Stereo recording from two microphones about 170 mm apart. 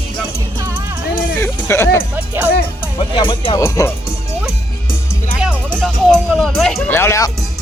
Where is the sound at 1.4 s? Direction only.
15° left (ahead or behind).